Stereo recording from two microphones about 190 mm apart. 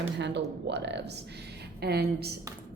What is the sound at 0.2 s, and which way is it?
Speech, 65° right (ahead or behind).